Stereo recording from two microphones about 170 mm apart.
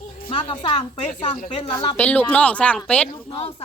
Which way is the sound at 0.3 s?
35° left (ahead or behind).